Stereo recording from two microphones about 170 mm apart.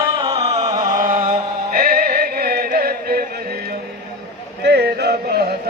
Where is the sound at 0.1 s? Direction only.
30° right (ahead or behind).